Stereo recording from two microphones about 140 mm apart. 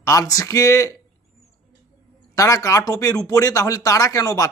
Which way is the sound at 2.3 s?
25° left (ahead or behind).